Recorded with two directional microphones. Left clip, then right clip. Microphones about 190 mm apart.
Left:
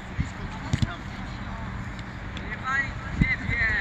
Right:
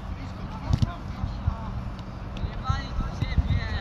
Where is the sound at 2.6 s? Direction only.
60° right (ahead or behind).